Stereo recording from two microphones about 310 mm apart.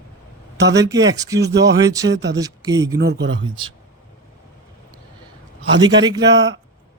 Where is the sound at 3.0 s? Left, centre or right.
Right.